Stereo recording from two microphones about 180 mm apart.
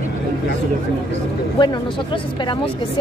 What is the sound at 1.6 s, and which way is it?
A woman's voice, 25° left (ahead or behind).